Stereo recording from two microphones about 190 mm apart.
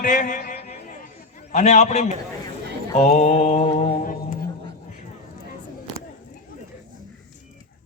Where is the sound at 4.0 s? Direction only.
45° left (ahead or behind).